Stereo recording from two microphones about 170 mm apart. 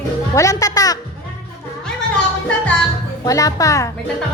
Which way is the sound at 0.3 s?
20° left (ahead or behind).